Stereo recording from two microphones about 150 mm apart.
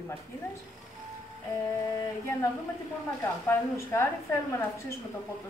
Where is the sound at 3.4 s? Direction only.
20° left (ahead or behind).